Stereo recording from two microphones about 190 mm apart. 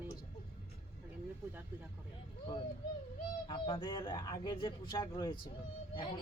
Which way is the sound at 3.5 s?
25° left (ahead or behind).